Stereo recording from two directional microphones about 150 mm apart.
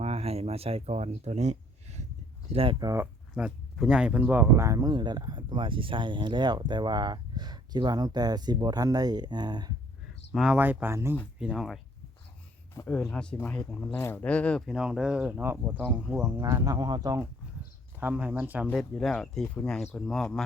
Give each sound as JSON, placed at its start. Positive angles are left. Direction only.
{"t": 0.0, "sound": "a sound", "side_deg": -40}
{"t": 2.5, "sound": "speech", "side_deg": -40}
{"t": 2.8, "sound": "speech", "side_deg": -20}
{"t": 3.3, "sound": "speech", "side_deg": -5}
{"t": 10.3, "sound": "speech", "side_deg": -5}
{"t": 11.3, "sound": "speech", "side_deg": -5}
{"t": 12.7, "sound": "speech", "side_deg": 15}
{"t": 14.7, "sound": "speech", "side_deg": -5}
{"t": 16.4, "sound": "speech", "side_deg": -20}
{"t": 18.0, "sound": "speech", "side_deg": -10}
{"t": 18.7, "sound": "speech", "side_deg": 0}